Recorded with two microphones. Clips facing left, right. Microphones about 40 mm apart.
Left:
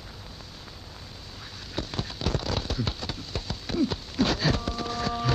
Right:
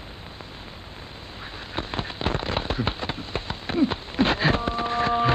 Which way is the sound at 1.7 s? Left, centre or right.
Right.